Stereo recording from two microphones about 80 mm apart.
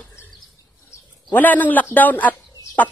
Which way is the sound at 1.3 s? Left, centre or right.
Left.